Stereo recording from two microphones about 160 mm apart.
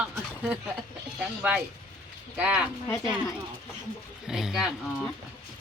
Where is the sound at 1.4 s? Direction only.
10° right (ahead or behind).